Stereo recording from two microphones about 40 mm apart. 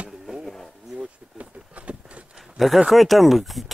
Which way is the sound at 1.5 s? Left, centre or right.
Right.